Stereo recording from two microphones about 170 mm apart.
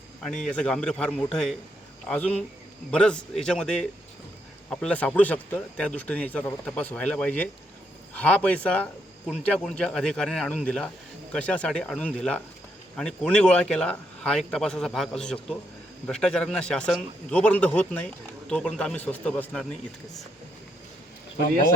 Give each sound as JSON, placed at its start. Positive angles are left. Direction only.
{"t": 0.2, "sound": "a man's voice", "side_deg": 5}